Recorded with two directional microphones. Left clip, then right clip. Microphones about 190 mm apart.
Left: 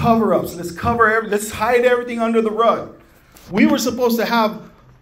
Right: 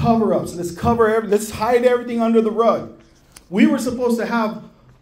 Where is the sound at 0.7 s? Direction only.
35° right (ahead or behind).